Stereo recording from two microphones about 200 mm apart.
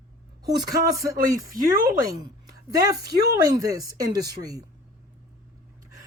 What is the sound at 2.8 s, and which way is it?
Speech, 20° right (ahead or behind).